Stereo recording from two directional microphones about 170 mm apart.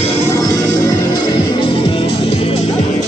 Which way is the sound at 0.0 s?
35° left (ahead or behind).